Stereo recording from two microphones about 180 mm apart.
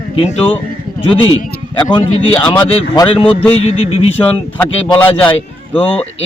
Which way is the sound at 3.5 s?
35° left (ahead or behind).